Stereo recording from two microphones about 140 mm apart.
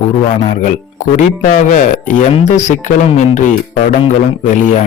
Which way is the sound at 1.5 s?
65° left (ahead or behind).